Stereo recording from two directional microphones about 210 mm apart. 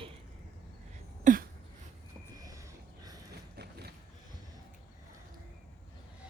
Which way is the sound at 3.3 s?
50° right (ahead or behind).